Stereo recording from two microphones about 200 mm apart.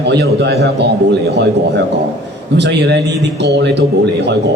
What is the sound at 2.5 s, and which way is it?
A man's voice, 60° right (ahead or behind).